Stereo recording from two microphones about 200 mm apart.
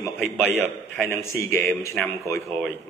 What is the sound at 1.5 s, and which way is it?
Speech, 10° left (ahead or behind).